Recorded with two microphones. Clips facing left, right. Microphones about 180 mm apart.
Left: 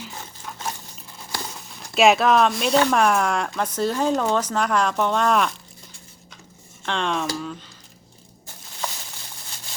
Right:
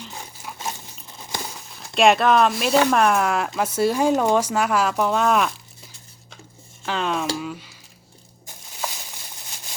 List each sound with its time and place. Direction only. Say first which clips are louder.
0.1 s a sound: even; 10° right (ahead or behind)
1.2 s speech: right 1 dB; 15° right (ahead or behind)
6.8 s speech: right 1 dB; 5° right (ahead or behind)